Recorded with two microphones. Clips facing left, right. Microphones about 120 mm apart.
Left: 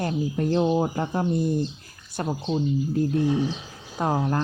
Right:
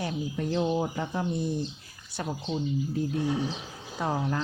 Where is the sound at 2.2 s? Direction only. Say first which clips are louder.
Left 5 dB; 35° left (ahead or behind).